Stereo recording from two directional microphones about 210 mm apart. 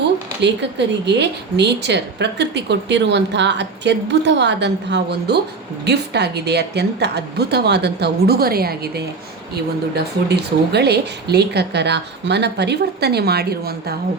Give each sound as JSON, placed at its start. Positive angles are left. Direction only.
{"t": 0.4, "sound": "a woman's voice", "side_deg": -55}
{"t": 9.9, "sound": "speech", "side_deg": -50}